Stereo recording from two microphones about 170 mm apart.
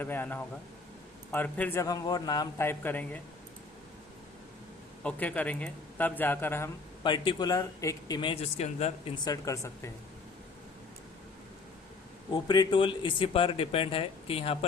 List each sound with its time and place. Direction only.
0.0 s a man's voice: 10° left (ahead or behind)
5.0 s a man's voice: 10° left (ahead or behind)
7.0 s speech: 30° left (ahead or behind)
9.2 s speech: 20° left (ahead or behind)
12.3 s speech: 25° left (ahead or behind)